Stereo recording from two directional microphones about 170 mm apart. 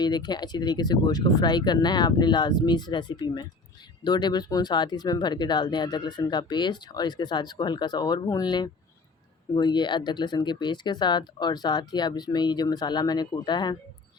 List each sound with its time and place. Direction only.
0.0 s speech: 25° left (ahead or behind)